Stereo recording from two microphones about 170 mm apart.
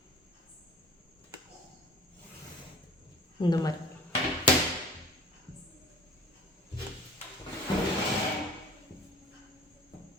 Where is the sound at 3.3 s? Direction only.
25° left (ahead or behind).